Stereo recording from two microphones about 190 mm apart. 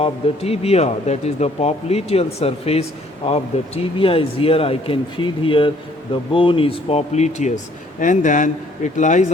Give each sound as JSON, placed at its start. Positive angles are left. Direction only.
{"t": 0.0, "sound": "speech", "side_deg": 30}